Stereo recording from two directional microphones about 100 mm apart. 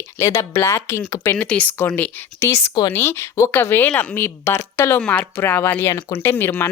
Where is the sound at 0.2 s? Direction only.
30° left (ahead or behind).